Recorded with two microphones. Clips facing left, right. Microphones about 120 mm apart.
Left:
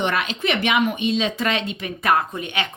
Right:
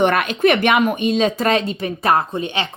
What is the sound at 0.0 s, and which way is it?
Speech, 50° right (ahead or behind).